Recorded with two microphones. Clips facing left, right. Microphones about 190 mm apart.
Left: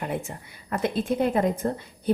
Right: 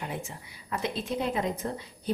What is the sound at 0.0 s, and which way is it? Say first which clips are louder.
A woman's voice: left 6 dB; 55° left (ahead or behind).